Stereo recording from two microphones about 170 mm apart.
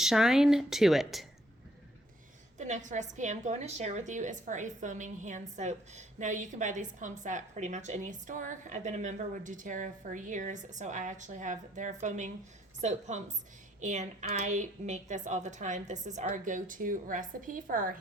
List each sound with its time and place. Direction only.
0.0 s a woman's voice: centre (ahead or behind)
2.6 s a woman's voice: 45° right (ahead or behind)